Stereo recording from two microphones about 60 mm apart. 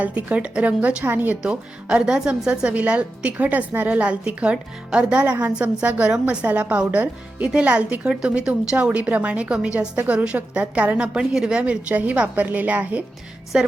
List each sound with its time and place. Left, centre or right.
0.0 s a woman's voice: right
1.4 s a woman's voice: centre
8.7 s a woman's voice: right
13.5 s a woman's voice: centre